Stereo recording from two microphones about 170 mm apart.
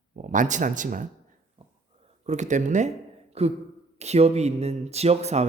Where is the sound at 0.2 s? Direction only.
50° right (ahead or behind).